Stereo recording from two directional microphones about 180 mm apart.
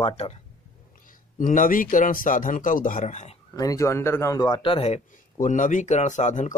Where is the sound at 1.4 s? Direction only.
45° left (ahead or behind).